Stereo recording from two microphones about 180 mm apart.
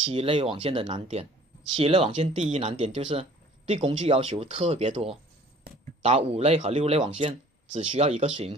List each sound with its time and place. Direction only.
0.0 s speech: 30° right (ahead or behind)